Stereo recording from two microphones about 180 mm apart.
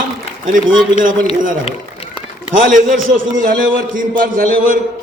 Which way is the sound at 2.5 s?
50° right (ahead or behind).